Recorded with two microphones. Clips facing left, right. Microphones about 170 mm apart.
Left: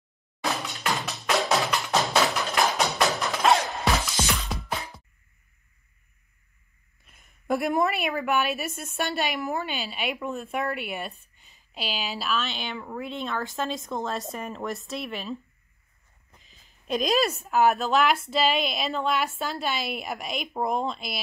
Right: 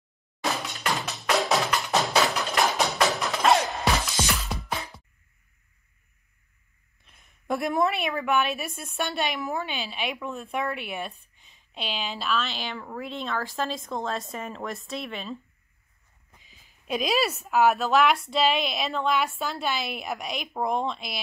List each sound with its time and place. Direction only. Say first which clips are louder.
0.4 s music: even; centre (ahead or behind)
7.1 s a woman's voice: left 2 dB; 5° left (ahead or behind)